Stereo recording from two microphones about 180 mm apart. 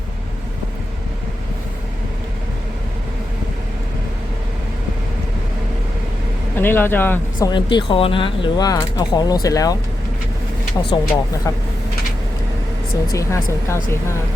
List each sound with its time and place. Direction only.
6.6 s speech: 10° left (ahead or behind)
7.3 s speech: 25° left (ahead or behind)
10.8 s speech: 10° left (ahead or behind)
13.1 s speech: 15° left (ahead or behind)